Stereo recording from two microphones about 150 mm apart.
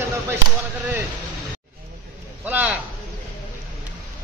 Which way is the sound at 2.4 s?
10° right (ahead or behind).